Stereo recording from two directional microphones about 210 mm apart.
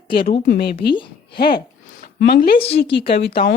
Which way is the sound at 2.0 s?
50° left (ahead or behind).